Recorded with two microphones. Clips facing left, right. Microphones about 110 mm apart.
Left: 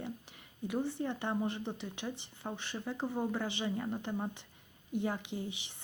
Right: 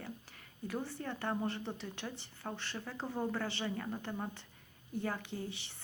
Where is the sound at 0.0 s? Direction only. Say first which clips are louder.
Left 4 dB; 15° left (ahead or behind).